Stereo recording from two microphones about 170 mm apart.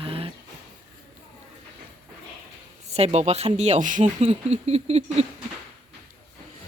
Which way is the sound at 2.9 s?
40° right (ahead or behind).